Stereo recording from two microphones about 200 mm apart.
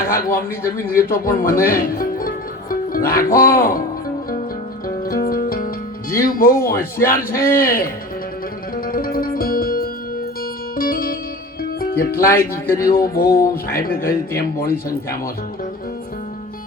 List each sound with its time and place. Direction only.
0.1 s speech: 45° left (ahead or behind)
0.6 s speech: 15° left (ahead or behind)
1.0 s speech: 45° left (ahead or behind)
1.7 s music: 45° left (ahead or behind)
3.5 s speech: 45° left (ahead or behind)
5.0 s music: 45° left (ahead or behind)
6.7 s speech: 45° left (ahead or behind)
8.7 s music: 45° left (ahead or behind)
11.8 s speech: 45° left (ahead or behind)
12.3 s speech: 15° left (ahead or behind)
12.8 s speech: 45° left (ahead or behind)